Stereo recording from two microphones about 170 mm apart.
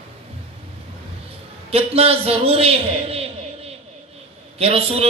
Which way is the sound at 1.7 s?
35° right (ahead or behind).